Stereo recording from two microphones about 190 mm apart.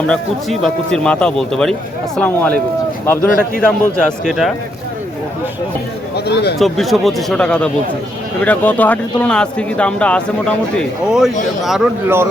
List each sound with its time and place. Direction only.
0.1 s speech: centre (ahead or behind)
3.6 s speech: 5° left (ahead or behind)
6.1 s speech: 60° left (ahead or behind)
6.6 s speech: centre (ahead or behind)
12.0 s a man's voice: 10° right (ahead or behind)